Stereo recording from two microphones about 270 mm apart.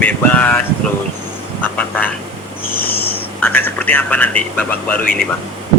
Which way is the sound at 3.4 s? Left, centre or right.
Centre.